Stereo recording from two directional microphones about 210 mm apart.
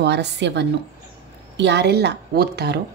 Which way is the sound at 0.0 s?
55° right (ahead or behind).